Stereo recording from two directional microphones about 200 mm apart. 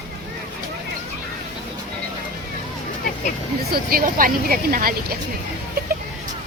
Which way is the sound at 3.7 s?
50° right (ahead or behind).